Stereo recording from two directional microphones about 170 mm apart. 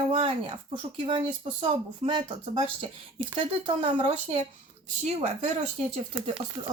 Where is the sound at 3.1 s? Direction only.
40° right (ahead or behind).